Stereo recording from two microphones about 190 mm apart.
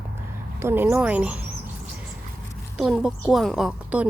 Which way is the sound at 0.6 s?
10° right (ahead or behind).